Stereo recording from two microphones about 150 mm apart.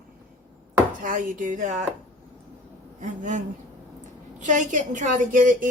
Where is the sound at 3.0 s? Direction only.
55° right (ahead or behind).